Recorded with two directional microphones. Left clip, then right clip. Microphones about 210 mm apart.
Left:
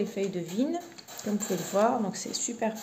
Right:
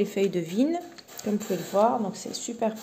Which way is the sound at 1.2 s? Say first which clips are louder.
Right 4 dB; 15° right (ahead or behind).